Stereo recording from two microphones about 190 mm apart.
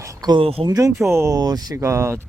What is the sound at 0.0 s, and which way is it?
Speech, 20° right (ahead or behind).